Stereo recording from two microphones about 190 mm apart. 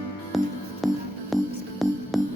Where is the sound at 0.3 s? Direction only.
Centre (ahead or behind).